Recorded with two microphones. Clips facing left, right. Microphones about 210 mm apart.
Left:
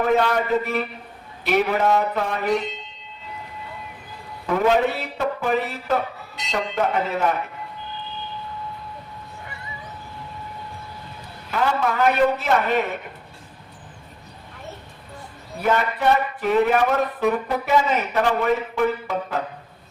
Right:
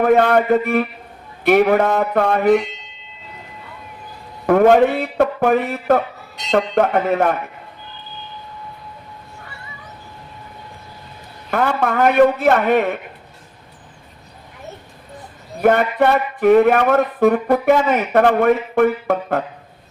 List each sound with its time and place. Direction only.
0.0 s a man's voice: 55° right (ahead or behind)
4.4 s a man's voice: 55° right (ahead or behind)
11.5 s a man's voice: 55° right (ahead or behind)
15.6 s speech: 55° right (ahead or behind)